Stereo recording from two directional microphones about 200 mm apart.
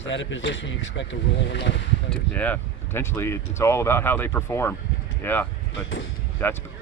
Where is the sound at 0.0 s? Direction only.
70° left (ahead or behind).